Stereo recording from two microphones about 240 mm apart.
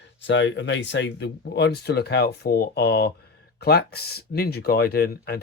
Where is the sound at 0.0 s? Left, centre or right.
Left.